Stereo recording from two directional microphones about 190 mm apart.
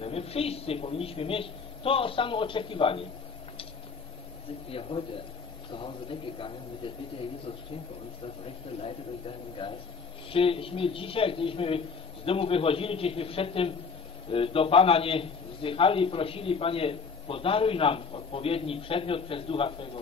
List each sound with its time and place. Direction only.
0.0 s a man's voice: 30° left (ahead or behind)
4.6 s a man's voice: 30° left (ahead or behind)
9.6 s a man's voice: 25° left (ahead or behind)